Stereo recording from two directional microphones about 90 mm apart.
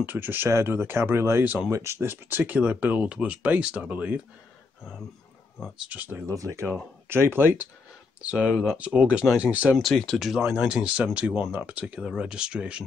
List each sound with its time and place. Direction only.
0.0 s speech: 20° right (ahead or behind)
5.8 s speech: 15° right (ahead or behind)
6.2 s speech: 35° right (ahead or behind)
8.2 s speech: 15° right (ahead or behind)
9.8 s speech: 5° left (ahead or behind)
10.6 s speech: 10° right (ahead or behind)